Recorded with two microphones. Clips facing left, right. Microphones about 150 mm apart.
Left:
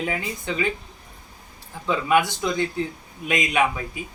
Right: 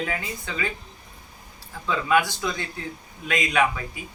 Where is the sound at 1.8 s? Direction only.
20° left (ahead or behind).